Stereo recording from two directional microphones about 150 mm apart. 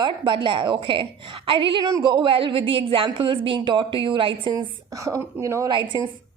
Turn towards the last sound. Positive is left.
turn(degrees=-30)  # may be behind; listen again after turning